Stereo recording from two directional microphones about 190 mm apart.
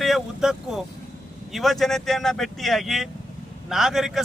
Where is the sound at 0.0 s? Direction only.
Centre (ahead or behind).